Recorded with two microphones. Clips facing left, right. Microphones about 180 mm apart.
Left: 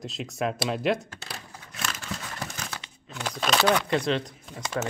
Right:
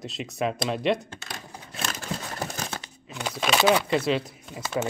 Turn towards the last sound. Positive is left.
turn(degrees=-5)  # may be behind; listen again after turning